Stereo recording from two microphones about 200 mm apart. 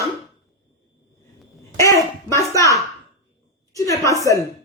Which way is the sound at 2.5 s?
15° left (ahead or behind).